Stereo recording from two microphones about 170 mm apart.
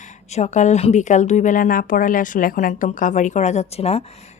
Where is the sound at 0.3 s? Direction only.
40° left (ahead or behind).